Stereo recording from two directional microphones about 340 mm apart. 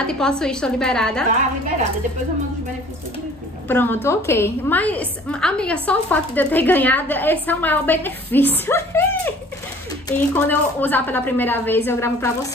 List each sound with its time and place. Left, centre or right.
0.0 s a woman's voice: centre
3.6 s a woman's voice: centre